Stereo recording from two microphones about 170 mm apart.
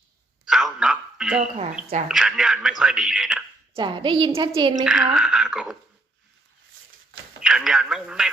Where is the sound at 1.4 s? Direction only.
40° right (ahead or behind).